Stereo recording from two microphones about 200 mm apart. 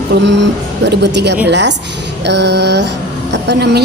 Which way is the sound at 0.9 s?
60° right (ahead or behind).